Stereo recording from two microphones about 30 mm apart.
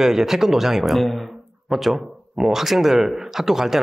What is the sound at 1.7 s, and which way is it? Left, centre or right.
Speech, centre.